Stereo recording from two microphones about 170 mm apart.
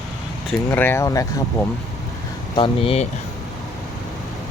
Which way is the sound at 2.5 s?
30° left (ahead or behind).